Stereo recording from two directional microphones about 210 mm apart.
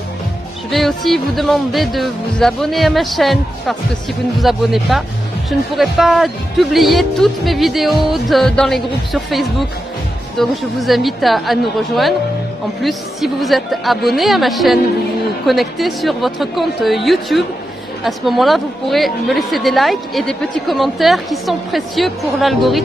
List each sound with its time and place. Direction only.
0.7 s a woman's voice: centre (ahead or behind)